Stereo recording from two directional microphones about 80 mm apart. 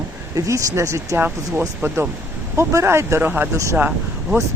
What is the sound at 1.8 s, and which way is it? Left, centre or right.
Speech, right.